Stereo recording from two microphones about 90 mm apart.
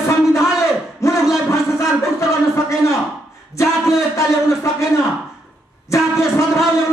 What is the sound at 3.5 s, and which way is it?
A man's voice, 35° left (ahead or behind).